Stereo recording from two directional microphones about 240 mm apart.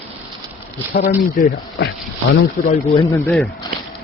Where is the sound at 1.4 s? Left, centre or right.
Left.